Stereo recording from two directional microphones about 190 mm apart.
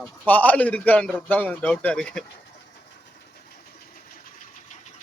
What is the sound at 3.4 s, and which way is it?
Engine, 55° left (ahead or behind).